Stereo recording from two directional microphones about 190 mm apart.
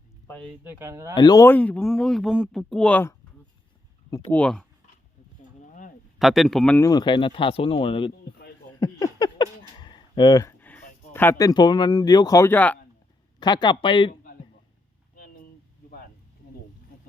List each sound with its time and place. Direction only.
0.3 s speech: 5° left (ahead or behind)
0.6 s speech: 10° right (ahead or behind)
1.1 s speech: 20° left (ahead or behind)
4.3 s speech: 5° left (ahead or behind)
6.1 s speech: centre (ahead or behind)
6.8 s speech: 20° left (ahead or behind)
8.8 s a sound: 20° left (ahead or behind)
13.4 s speech: 25° left (ahead or behind)
15.1 s a sound: 50° left (ahead or behind)